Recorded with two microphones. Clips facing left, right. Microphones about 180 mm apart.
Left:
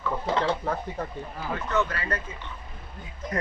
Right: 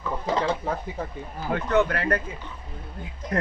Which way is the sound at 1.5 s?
60° right (ahead or behind).